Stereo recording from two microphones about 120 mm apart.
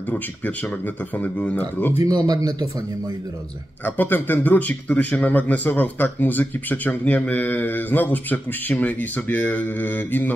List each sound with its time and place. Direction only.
0.1 s speech: 10° left (ahead or behind)
2.2 s a man's voice: 35° right (ahead or behind)
3.8 s speech: 15° left (ahead or behind)